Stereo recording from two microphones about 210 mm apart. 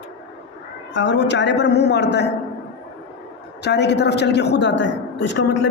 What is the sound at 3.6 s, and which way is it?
A woman's voice, 55° left (ahead or behind).